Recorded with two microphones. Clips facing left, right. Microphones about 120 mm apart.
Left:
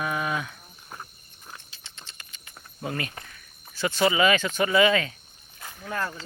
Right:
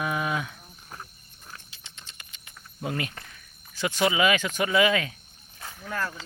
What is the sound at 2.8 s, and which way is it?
Speech, 15° right (ahead or behind).